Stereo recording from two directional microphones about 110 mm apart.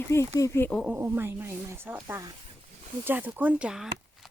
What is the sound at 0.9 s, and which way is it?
Speech, 20° right (ahead or behind).